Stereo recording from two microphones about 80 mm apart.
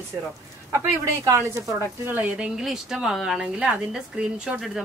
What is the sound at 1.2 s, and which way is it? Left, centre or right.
Speech, right.